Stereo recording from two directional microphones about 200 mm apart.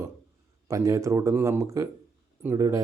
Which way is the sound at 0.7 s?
15° right (ahead or behind).